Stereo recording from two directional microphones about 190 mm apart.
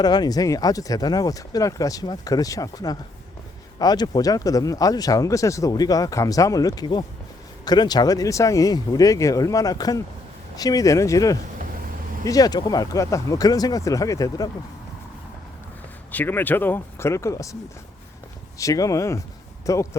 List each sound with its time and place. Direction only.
0.0 s speech: 20° left (ahead or behind)
16.1 s speech: 10° left (ahead or behind)